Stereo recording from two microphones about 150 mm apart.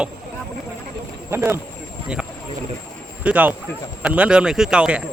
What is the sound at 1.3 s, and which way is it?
Speech, 15° right (ahead or behind).